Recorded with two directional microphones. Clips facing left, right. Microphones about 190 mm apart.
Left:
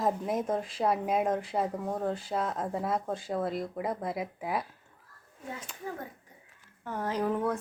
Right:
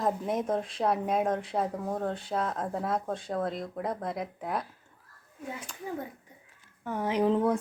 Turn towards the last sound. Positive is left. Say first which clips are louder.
# right 4 dB
turn(degrees=-20)  # may be behind; listen again after turning